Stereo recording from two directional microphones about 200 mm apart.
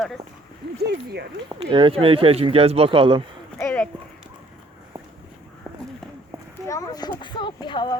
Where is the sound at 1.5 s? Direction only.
25° right (ahead or behind).